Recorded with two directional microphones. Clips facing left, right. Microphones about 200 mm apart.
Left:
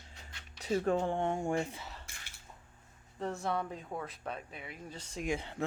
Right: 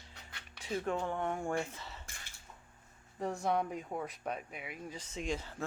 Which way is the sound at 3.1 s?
15° right (ahead or behind).